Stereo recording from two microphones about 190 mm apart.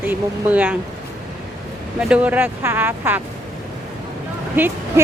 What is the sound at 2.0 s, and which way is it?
Speech, 5° right (ahead or behind).